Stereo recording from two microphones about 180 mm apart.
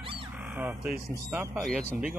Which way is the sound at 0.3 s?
10° right (ahead or behind).